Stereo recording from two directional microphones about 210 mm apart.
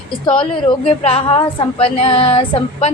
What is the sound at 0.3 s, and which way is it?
A woman's voice, 25° left (ahead or behind).